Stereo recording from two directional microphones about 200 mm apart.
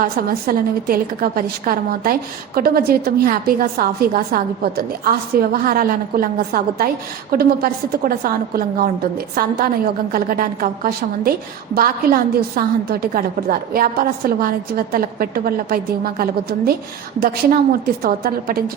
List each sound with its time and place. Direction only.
0.0 s a woman's voice: 45° right (ahead or behind)